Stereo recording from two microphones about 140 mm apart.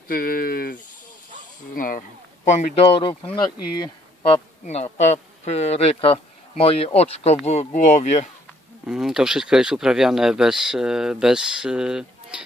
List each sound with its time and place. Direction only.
0.1 s speech: 90° left; by 2.7 s 65° left (ahead or behind)
2.9 s speech: 35° left (ahead or behind); by 8.3 s 60° left (ahead or behind)
8.8 s speech: 5° right (ahead or behind)